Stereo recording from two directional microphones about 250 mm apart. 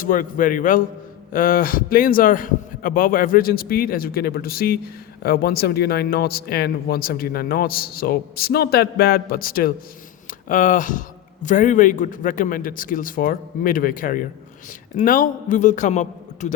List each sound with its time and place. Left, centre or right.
0.0 s a man's voice: left